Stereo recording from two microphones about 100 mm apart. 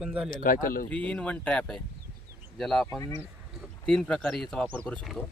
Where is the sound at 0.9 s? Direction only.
10° left (ahead or behind).